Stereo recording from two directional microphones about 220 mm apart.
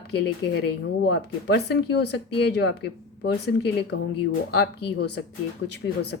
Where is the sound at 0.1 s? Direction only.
50° left (ahead or behind).